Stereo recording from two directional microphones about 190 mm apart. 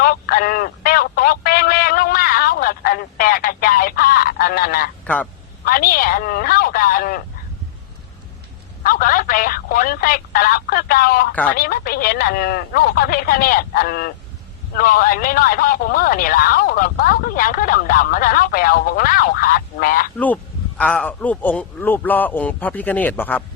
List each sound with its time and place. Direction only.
0.0 s telephone: 50° left (ahead or behind)
5.0 s speech: 5° left (ahead or behind)
5.6 s a man's voice: 50° left (ahead or behind)
8.8 s a man's voice: 50° left (ahead or behind)
20.1 s speech: 5° left (ahead or behind)